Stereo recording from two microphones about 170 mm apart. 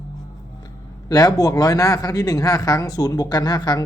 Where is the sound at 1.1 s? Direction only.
20° left (ahead or behind).